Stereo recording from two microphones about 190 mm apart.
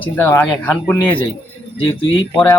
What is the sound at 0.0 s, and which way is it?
Speech, 10° left (ahead or behind).